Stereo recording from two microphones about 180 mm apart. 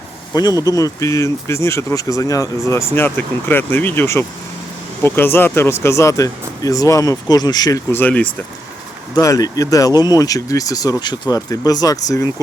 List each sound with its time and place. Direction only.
0.3 s speech: 20° left (ahead or behind)
9.1 s speech: 20° left (ahead or behind)